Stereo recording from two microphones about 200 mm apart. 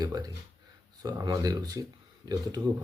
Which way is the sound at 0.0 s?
20° right (ahead or behind).